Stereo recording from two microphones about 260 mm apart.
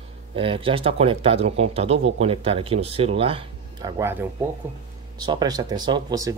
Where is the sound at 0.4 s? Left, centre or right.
Right.